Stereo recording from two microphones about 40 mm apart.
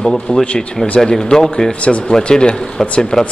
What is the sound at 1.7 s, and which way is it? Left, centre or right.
A man's voice, left.